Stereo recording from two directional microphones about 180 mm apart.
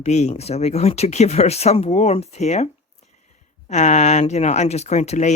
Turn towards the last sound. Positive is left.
turn(degrees=40)  # may be behind; listen again after turning